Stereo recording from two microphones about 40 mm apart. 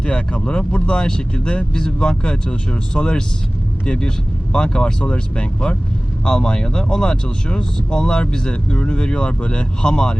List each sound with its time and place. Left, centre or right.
0.0 s speech: left
9.8 s speech: left